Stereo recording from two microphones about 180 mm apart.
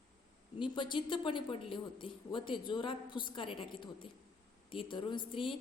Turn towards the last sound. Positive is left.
turn(degrees=30)  # may be behind; listen again after turning